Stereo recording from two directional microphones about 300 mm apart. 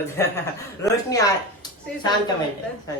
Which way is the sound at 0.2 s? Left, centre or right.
Centre.